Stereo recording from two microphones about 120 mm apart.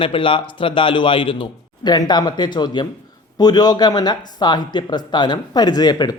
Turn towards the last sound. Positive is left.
turn(degrees=35)  # may be behind; listen again after turning